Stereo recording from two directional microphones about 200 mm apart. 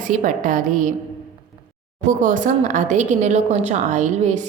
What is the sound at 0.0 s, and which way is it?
Speech, 40° right (ahead or behind).